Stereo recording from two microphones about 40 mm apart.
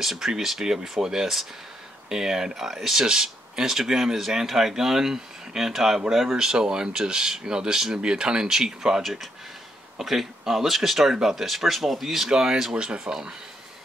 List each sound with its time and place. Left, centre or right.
0.0 s speech: centre
12.7 s speech: right